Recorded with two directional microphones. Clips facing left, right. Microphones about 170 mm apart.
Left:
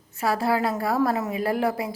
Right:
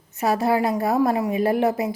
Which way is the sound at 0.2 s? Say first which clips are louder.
Right 3 dB; 20° right (ahead or behind).